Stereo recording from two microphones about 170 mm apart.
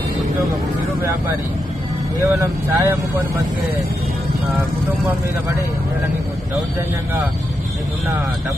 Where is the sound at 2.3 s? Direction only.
15° right (ahead or behind).